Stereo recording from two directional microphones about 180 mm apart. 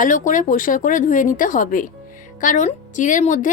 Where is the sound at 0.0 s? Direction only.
45° left (ahead or behind).